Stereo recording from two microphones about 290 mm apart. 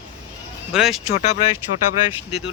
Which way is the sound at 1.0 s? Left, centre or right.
Left.